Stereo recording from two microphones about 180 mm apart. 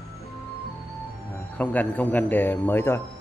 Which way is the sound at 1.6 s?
10° left (ahead or behind).